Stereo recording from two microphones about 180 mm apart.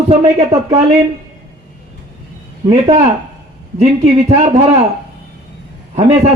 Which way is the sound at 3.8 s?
35° right (ahead or behind).